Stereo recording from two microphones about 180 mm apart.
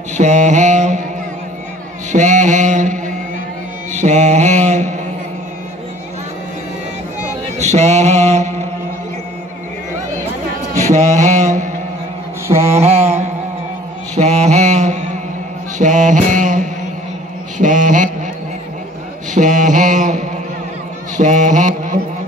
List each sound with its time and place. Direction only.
0.2 s mantra: 40° right (ahead or behind)
2.1 s a sound: 40° right (ahead or behind)
3.9 s mantra: 40° right (ahead or behind)
7.5 s mantra: 40° right (ahead or behind)
10.8 s mantra: 40° right (ahead or behind)
12.4 s mantra: 15° right (ahead or behind)
12.7 s mantra: 35° right (ahead or behind)
15.8 s music: 45° right (ahead or behind)
17.6 s mantra: 45° right (ahead or behind)
19.3 s a sound: 45° right (ahead or behind)
21.2 s mantra: 45° right (ahead or behind)